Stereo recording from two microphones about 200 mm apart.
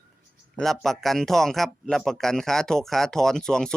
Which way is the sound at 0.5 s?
Centre (ahead or behind).